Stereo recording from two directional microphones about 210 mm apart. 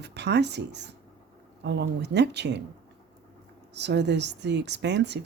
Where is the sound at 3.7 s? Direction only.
55° right (ahead or behind).